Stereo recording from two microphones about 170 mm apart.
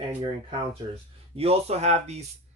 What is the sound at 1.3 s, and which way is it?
Speech, 35° right (ahead or behind).